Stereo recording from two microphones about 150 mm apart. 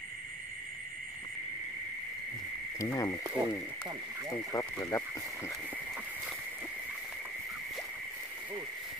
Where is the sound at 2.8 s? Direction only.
25° left (ahead or behind).